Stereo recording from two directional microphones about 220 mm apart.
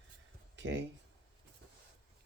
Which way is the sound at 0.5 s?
55° right (ahead or behind).